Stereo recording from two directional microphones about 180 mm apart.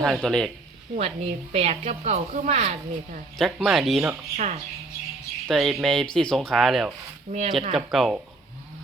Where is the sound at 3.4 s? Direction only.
Centre (ahead or behind).